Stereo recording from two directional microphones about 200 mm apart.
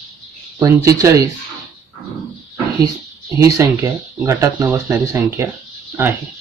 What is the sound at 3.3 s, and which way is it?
Speech, 15° right (ahead or behind).